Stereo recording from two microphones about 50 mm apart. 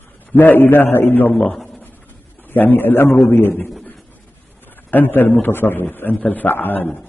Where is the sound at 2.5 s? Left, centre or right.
Left.